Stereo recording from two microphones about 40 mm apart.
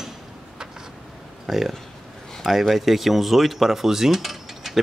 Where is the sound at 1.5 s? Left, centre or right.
Centre.